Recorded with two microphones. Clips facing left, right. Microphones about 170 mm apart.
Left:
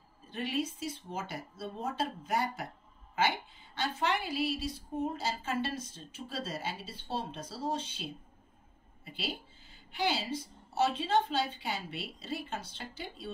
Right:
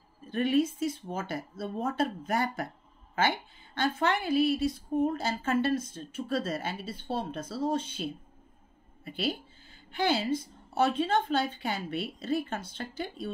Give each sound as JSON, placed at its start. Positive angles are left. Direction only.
{"t": 0.3, "sound": "a woman's voice", "side_deg": -55}
{"t": 3.7, "sound": "a woman's voice", "side_deg": -55}